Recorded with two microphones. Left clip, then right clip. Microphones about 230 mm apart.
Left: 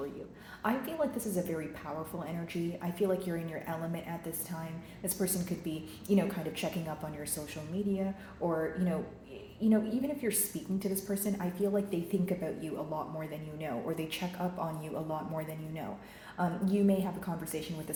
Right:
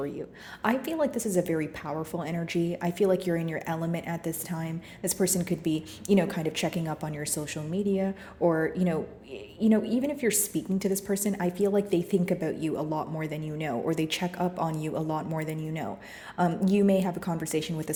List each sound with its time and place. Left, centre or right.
0.6 s speech: right